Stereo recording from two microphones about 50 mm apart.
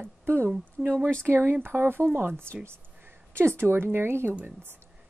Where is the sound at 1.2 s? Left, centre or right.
Right.